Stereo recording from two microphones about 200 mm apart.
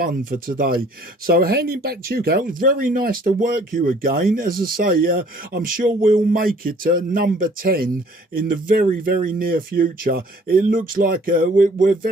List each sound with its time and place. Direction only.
0.0 s speech: 45° right (ahead or behind)